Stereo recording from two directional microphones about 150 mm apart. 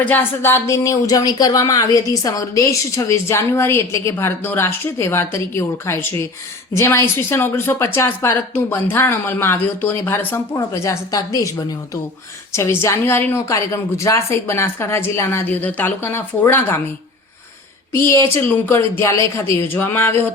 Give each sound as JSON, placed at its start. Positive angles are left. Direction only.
{"t": 0.0, "sound": "a woman's voice", "side_deg": 15}
{"t": 18.4, "sound": "a woman's voice", "side_deg": 15}